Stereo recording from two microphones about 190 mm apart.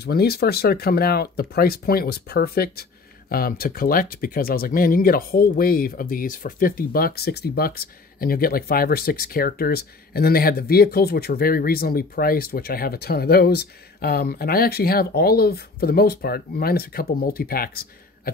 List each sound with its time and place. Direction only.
0.0 s speech: 55° left (ahead or behind)